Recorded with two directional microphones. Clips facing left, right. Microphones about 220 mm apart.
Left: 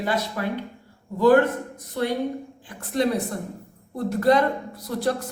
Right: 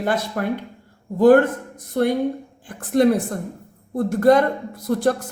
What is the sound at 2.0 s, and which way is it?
Speech, 50° right (ahead or behind).